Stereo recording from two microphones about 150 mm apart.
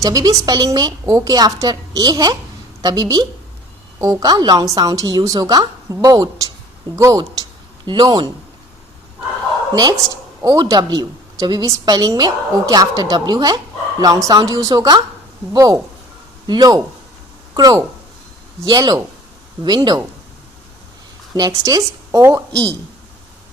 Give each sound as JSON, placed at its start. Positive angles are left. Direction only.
{"t": 0.0, "sound": "a woman's voice", "side_deg": -20}
{"t": 10.4, "sound": "a woman's voice", "side_deg": -25}
{"t": 21.3, "sound": "a woman's voice", "side_deg": -25}